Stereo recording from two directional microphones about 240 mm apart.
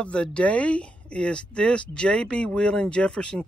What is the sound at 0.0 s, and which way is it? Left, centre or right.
Speech, centre.